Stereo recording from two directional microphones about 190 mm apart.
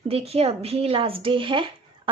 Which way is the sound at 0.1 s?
30° right (ahead or behind).